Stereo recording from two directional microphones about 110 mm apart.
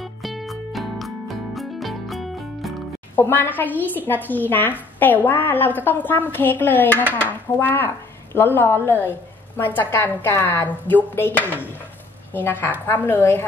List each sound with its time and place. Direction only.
0.0 s music: centre (ahead or behind)
3.2 s a woman's voice: 15° left (ahead or behind)